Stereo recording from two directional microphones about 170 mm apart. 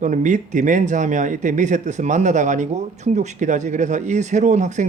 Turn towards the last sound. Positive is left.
turn(degrees=-45)  # may be behind; listen again after turning